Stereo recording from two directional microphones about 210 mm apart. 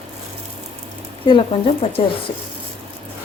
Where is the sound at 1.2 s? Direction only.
25° left (ahead or behind).